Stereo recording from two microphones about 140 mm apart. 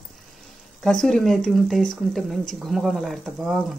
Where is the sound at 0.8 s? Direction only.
Centre (ahead or behind).